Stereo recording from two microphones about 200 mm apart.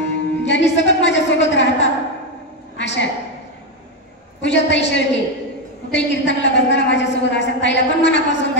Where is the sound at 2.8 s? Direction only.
65° left (ahead or behind).